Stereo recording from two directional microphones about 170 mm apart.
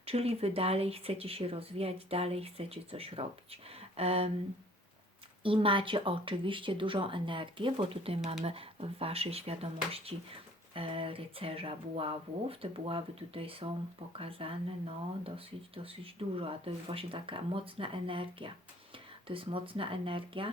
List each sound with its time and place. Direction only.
0.0 s speech: 35° right (ahead or behind)
5.4 s speech: 30° right (ahead or behind)
10.8 s speech: 30° right (ahead or behind)